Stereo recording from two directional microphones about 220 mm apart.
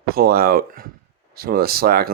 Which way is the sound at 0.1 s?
45° right (ahead or behind).